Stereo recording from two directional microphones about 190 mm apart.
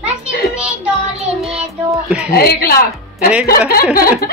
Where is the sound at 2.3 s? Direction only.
55° left (ahead or behind).